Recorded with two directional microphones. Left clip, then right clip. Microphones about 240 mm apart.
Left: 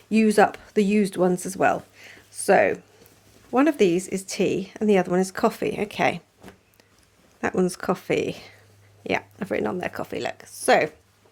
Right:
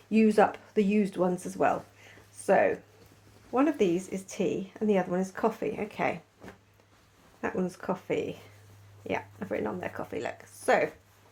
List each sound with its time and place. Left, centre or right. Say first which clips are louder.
0.1 s speech: left 5 dB; left
7.4 s speech: left 8 dB; left